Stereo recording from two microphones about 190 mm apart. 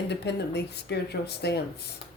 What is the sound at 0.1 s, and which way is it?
Speech, 60° left (ahead or behind).